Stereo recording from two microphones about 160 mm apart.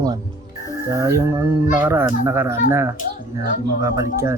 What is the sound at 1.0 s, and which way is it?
Speech, 15° right (ahead or behind).